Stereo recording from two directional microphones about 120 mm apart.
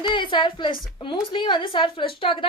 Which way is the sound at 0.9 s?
40° left (ahead or behind).